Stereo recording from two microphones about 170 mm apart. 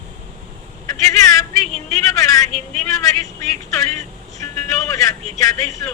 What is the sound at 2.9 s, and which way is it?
Speech, 20° left (ahead or behind).